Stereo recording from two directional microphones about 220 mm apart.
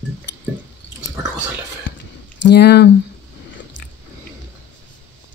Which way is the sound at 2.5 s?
50° left (ahead or behind).